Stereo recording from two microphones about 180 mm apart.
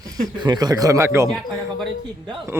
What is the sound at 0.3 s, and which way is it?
Speech, 25° right (ahead or behind).